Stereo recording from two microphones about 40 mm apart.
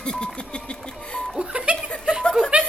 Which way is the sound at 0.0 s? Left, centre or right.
Left.